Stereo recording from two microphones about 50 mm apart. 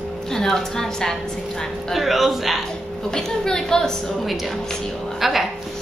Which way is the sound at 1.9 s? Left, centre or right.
Centre.